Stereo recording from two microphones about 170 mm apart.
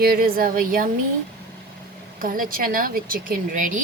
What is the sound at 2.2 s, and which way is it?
Speech, 55° right (ahead or behind).